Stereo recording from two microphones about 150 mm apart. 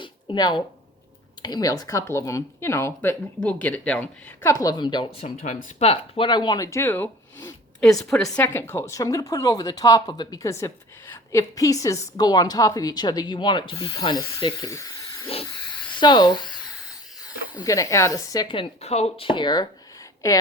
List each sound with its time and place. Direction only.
0.0 s a sound: 30° left (ahead or behind)
1.4 s a woman's voice: 25° left (ahead or behind); by 4.5 s 10° left (ahead or behind)
4.5 s a woman's voice: 25° left (ahead or behind)
5.2 s speech: 55° left (ahead or behind); by 7.4 s 15° left (ahead or behind)
7.9 s a woman's voice: centre (ahead or behind)
8.5 s a woman's voice: 15° left (ahead or behind)
17.6 s a woman's voice: 20° left (ahead or behind)